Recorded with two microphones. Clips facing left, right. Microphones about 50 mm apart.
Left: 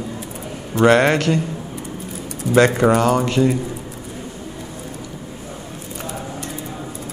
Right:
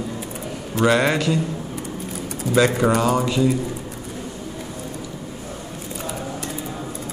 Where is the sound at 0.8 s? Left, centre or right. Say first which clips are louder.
Left 4 dB; left.